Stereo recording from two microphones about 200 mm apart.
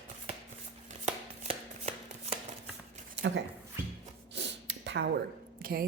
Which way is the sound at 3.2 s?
65° right (ahead or behind).